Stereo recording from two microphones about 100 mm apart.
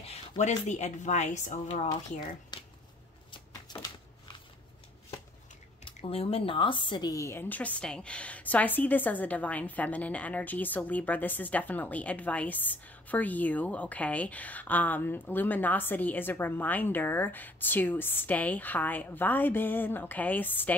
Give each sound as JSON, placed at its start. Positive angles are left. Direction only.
{"t": 0.3, "sound": "speech", "side_deg": 40}
{"t": 1.9, "sound": "speech", "side_deg": 50}
{"t": 3.3, "sound": "a sound", "side_deg": 50}
{"t": 5.9, "sound": "speech", "side_deg": 70}
{"t": 7.1, "sound": "a woman's voice", "side_deg": 30}